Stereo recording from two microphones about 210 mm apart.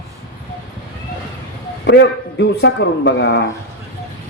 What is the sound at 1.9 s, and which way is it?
Speech, 55° left (ahead or behind).